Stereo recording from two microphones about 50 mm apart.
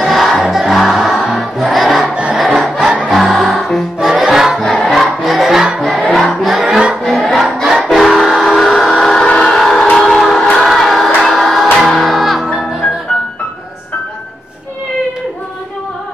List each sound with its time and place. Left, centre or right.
0.0 s music: centre
2.3 s crowd: centre
3.1 s music: centre
4.6 s crowd: centre
5.8 s crowd: centre
8.2 s train: centre
9.5 s a sound: centre
10.1 s music: centre
10.6 s choir: centre
11.1 s music: centre